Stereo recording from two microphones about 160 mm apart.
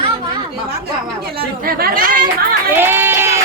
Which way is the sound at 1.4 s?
70° right (ahead or behind).